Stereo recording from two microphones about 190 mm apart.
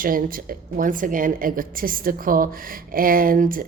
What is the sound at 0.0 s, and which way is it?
Speech, 45° right (ahead or behind).